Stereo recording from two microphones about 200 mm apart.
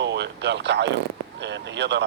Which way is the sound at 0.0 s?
60° right (ahead or behind).